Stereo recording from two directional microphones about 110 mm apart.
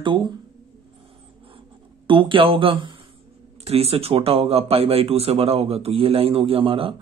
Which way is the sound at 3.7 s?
65° right (ahead or behind).